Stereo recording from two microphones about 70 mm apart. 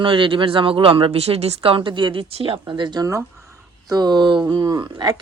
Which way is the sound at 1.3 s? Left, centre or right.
Right.